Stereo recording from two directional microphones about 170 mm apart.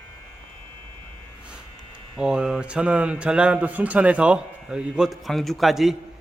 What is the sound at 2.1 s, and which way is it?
Speech, 5° right (ahead or behind).